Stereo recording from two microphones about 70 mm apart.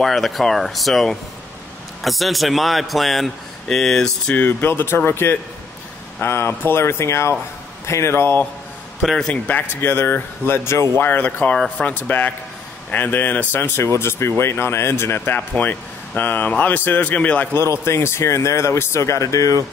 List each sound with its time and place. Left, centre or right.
0.0 s speech: centre
4.3 s speech: left
9.0 s speech: centre
9.3 s speech: left
17.6 s speech: left